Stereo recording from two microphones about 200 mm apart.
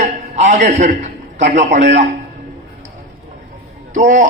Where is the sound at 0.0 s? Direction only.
35° right (ahead or behind).